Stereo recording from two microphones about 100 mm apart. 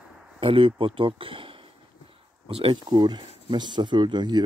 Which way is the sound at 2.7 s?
45° right (ahead or behind).